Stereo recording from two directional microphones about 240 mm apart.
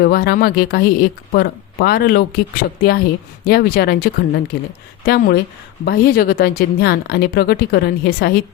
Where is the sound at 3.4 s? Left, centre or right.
Left.